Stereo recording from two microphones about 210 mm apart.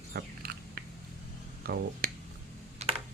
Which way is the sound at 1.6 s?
45° right (ahead or behind).